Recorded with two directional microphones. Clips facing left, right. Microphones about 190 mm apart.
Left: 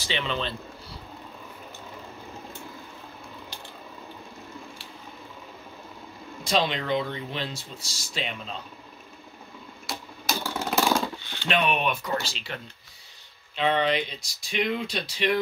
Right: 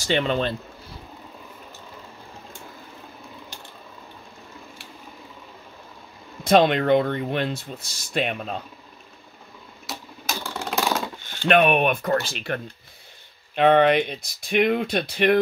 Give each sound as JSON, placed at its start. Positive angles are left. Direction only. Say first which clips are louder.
{"t": 0.0, "sound": "speech", "louder": "right 7 dB", "side_deg": -50}
{"t": 6.4, "sound": "speech", "louder": "right 9 dB", "side_deg": -55}
{"t": 9.8, "sound": "a sound", "louder": "left 1 dB", "side_deg": 0}
{"t": 11.2, "sound": "speech", "louder": "right 11 dB", "side_deg": -50}